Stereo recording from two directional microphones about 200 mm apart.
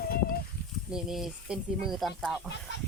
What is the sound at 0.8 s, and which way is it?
Speech, 5° right (ahead or behind).